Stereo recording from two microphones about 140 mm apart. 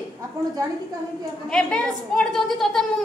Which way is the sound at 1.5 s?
5° left (ahead or behind).